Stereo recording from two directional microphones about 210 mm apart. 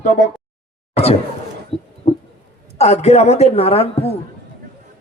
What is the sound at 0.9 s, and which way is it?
Speech, 30° left (ahead or behind).